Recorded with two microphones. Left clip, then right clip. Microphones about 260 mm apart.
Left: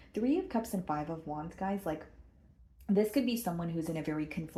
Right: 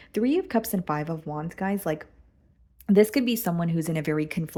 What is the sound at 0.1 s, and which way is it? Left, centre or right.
Speech, right.